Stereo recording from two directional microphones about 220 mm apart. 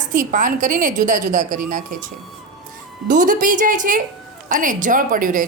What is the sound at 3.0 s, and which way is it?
A woman's voice, 35° right (ahead or behind).